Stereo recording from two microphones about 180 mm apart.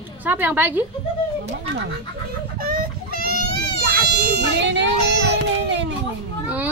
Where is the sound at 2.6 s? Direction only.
55° right (ahead or behind).